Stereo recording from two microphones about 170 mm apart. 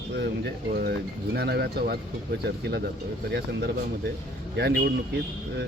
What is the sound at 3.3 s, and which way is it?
Speech, 90° right.